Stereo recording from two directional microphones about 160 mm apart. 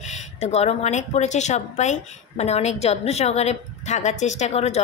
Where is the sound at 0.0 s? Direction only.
45° left (ahead or behind).